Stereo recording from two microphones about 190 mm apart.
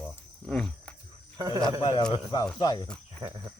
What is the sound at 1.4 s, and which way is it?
Speech, 20° right (ahead or behind).